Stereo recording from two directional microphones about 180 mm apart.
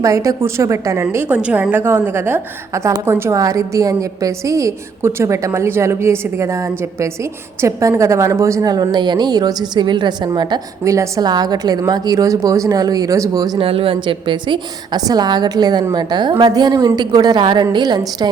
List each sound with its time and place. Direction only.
0.0 s a woman's voice: 15° right (ahead or behind)